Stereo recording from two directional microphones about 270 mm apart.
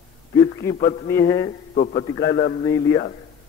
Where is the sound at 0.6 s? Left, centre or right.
Left.